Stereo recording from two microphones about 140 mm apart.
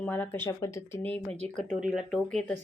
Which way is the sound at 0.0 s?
15° left (ahead or behind).